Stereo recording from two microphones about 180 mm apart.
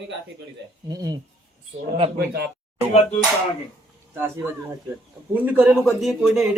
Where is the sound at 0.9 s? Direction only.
20° right (ahead or behind).